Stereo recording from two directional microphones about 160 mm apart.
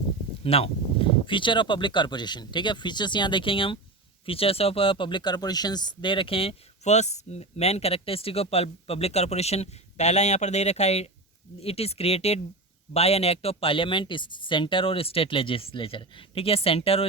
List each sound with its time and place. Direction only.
0.4 s speech: 35° left (ahead or behind)